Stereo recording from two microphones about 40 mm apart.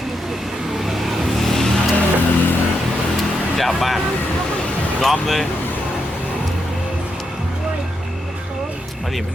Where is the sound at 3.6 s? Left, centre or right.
Centre.